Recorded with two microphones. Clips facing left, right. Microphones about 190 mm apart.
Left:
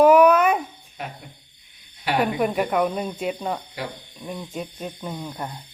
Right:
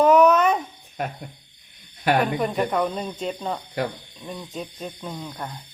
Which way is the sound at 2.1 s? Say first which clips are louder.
Left 3 dB; 10° left (ahead or behind).